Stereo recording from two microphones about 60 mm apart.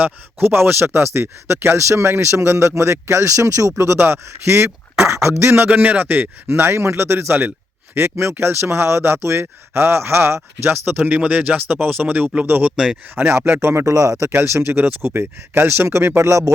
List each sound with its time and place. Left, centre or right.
0.0 s speech: right
3.9 s speech: right
5.0 s a sound: right
5.4 s speech: right
5.6 s a man's voice: right
6.5 s speech: right
12.7 s speech: centre
13.1 s speech: right
13.8 s speech: right
14.4 s speech: right